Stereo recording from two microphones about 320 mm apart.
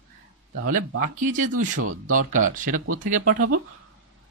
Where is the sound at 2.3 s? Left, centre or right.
Right.